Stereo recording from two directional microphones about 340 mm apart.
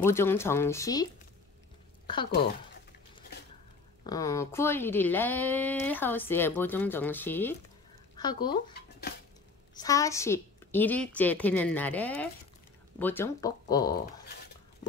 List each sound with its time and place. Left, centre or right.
0.0 s speech: centre
4.0 s speech: centre
9.8 s speech: centre